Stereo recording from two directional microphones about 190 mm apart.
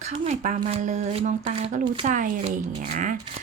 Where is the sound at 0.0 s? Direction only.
35° right (ahead or behind).